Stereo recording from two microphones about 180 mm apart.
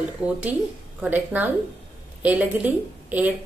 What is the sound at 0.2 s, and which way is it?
A woman's voice, 5° right (ahead or behind).